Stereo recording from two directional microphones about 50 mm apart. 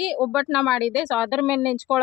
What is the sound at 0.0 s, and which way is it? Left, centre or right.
Speech, centre.